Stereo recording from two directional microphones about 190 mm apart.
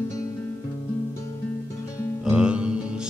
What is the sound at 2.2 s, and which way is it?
Music, 5° right (ahead or behind).